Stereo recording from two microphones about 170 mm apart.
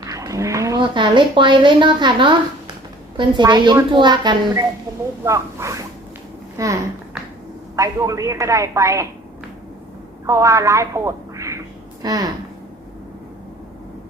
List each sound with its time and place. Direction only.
0.0 s a woman's voice: 20° right (ahead or behind)
7.8 s a woman's voice: 20° right (ahead or behind)
10.2 s a woman's voice: 20° right (ahead or behind)